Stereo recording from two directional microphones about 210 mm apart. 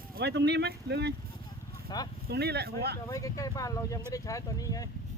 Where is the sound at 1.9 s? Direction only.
20° left (ahead or behind).